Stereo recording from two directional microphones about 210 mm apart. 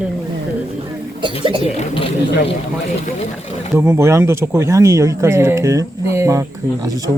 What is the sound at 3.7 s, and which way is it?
Speech, 15° right (ahead or behind).